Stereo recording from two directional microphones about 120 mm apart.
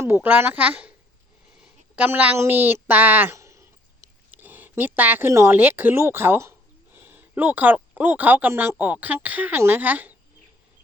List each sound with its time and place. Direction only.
0.0 s speech: 20° right (ahead or behind)
1.5 s a sound: 10° right (ahead or behind)
2.0 s speech: 15° right (ahead or behind)